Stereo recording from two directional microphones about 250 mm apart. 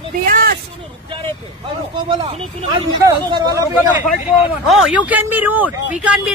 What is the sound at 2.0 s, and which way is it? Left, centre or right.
Speech, right.